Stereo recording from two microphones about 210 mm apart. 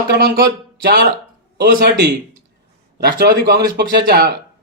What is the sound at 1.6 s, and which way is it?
Speech, 50° right (ahead or behind).